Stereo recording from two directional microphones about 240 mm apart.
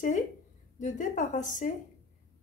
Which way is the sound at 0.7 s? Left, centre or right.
Left.